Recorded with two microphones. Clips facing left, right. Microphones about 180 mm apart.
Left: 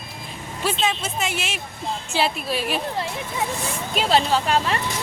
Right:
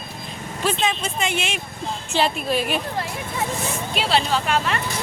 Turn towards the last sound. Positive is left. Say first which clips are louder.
# left 1 dB
turn(degrees=35)  # may be behind; listen again after turning